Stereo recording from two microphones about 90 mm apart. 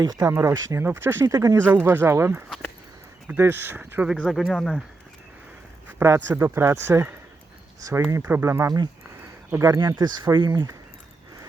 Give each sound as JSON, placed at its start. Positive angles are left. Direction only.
{"t": 0.0, "sound": "speech", "side_deg": -40}
{"t": 1.3, "sound": "speech", "side_deg": -40}
{"t": 1.5, "sound": "speech", "side_deg": -25}
{"t": 4.3, "sound": "speech", "side_deg": 0}
{"t": 6.0, "sound": "speech", "side_deg": -25}
{"t": 7.8, "sound": "speech", "side_deg": -40}
{"t": 8.2, "sound": "speech", "side_deg": -25}
{"t": 8.6, "sound": "speech", "side_deg": -45}
{"t": 9.5, "sound": "speech", "side_deg": -30}
{"t": 10.3, "sound": "speech", "side_deg": -55}